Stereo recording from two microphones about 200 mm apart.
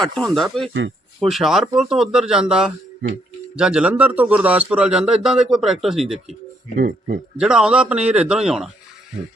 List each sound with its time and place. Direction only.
0.0 s a man's voice: 5° left (ahead or behind)
6.7 s speech: 45° right (ahead or behind)
7.3 s a man's voice: 5° right (ahead or behind)